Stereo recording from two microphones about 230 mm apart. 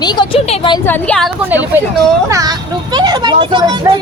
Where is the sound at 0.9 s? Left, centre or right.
Centre.